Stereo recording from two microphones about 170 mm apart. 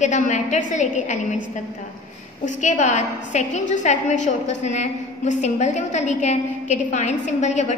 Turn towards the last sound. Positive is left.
turn(degrees=45)  # may be behind; listen again after turning